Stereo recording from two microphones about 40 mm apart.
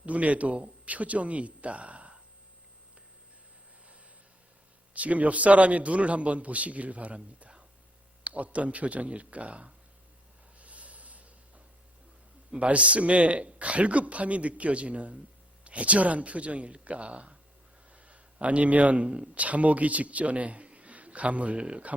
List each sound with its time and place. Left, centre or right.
0.0 s speech: right
4.9 s speech: right
10.6 s snort: right
12.5 s speech: right